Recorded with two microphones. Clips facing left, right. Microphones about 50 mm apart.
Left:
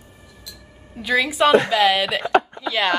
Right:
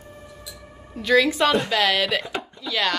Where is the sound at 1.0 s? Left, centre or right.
Centre.